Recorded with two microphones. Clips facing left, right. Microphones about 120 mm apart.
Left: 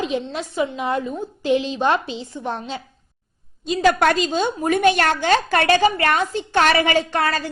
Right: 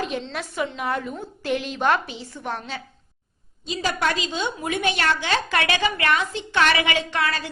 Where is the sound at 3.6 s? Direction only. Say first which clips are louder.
Left 8 dB; 50° left (ahead or behind).